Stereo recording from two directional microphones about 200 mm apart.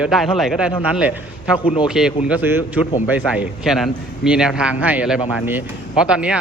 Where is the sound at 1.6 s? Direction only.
30° left (ahead or behind).